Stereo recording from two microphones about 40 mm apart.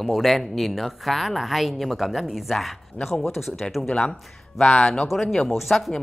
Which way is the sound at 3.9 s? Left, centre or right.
Left.